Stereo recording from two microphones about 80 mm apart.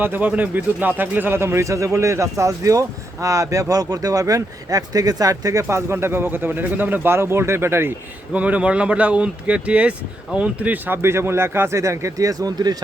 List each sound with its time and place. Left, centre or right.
0.0 s speech: right
8.3 s speech: centre; by 12.7 s right